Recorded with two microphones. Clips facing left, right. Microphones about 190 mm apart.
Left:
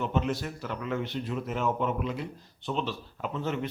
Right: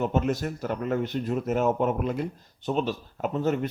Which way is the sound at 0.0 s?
45° right (ahead or behind).